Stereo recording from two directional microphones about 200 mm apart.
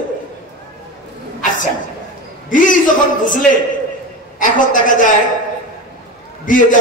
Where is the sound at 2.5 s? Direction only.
40° left (ahead or behind).